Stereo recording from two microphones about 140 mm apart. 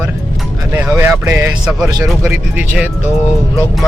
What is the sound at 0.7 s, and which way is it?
Speech, 20° right (ahead or behind).